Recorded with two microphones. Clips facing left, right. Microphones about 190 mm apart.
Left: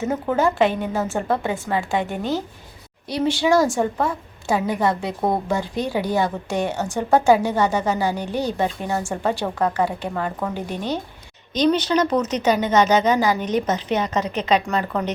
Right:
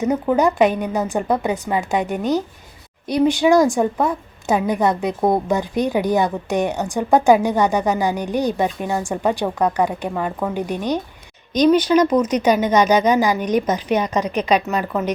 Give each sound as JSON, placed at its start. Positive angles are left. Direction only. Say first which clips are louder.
{"t": 0.0, "sound": "a woman's voice", "louder": "right 3 dB", "side_deg": -15}